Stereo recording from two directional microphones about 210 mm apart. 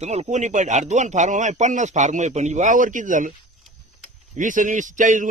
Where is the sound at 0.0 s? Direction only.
30° right (ahead or behind).